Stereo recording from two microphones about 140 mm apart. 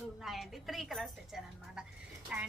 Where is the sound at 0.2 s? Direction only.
Centre (ahead or behind).